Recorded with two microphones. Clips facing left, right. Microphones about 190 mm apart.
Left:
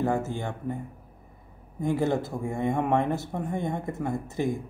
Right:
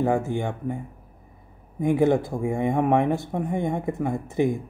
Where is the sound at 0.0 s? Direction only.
15° right (ahead or behind).